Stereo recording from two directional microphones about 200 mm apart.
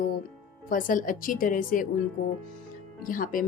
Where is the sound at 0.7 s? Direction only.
45° left (ahead or behind).